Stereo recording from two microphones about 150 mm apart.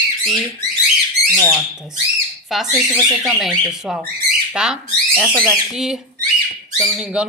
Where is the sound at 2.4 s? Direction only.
Centre (ahead or behind).